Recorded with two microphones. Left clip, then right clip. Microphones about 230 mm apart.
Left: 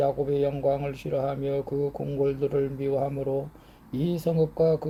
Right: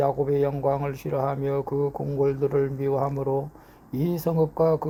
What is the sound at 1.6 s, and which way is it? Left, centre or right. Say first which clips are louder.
Speech: right 2 dB; right.